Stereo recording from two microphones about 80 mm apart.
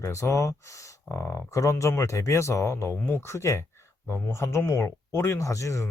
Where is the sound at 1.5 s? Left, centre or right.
Left.